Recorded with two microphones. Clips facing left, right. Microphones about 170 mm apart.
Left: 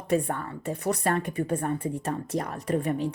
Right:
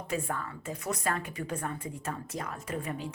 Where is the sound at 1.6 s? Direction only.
60° left (ahead or behind).